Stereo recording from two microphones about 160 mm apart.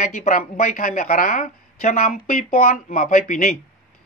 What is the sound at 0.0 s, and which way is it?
Speech, 50° left (ahead or behind).